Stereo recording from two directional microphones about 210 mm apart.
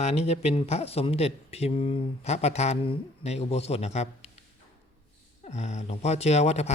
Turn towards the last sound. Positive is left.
turn(degrees=30)  # may be behind; listen again after turning